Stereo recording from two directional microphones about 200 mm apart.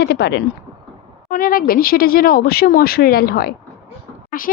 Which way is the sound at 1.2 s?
45° left (ahead or behind).